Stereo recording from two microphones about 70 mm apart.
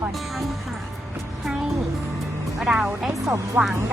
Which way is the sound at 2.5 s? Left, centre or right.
Centre.